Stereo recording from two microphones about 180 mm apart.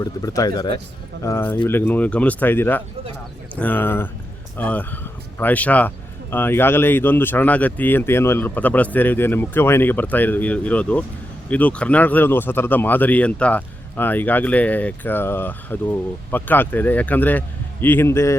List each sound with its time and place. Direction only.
0.0 s speech: 20° left (ahead or behind)